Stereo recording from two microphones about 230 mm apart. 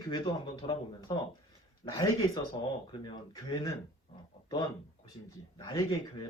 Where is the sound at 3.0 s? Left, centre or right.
Centre.